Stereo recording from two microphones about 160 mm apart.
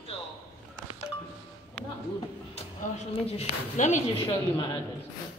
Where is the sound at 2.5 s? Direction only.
40° left (ahead or behind).